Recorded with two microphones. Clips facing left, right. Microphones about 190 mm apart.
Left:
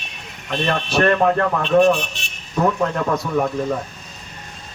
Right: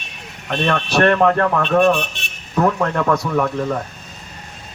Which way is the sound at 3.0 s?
75° right (ahead or behind).